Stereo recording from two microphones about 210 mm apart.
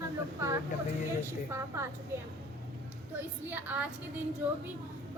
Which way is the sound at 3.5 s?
10° right (ahead or behind).